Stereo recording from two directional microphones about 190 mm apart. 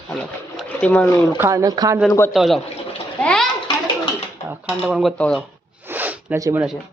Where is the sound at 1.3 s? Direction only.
15° right (ahead or behind).